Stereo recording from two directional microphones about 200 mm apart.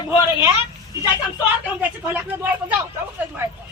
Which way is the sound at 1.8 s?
10° right (ahead or behind).